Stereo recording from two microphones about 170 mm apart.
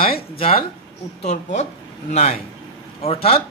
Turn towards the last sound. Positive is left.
turn(degrees=35)  # may be behind; listen again after turning